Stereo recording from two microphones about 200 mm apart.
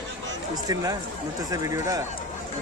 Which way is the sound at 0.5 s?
20° right (ahead or behind).